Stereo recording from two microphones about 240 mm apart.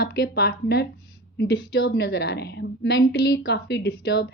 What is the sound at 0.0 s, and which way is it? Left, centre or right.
A woman's voice, left.